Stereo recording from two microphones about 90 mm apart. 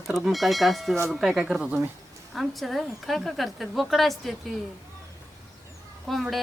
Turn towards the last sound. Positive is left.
turn(degrees=0)  # may be behind; listen again after turning